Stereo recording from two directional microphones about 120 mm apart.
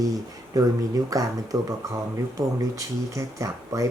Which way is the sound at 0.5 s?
30° right (ahead or behind).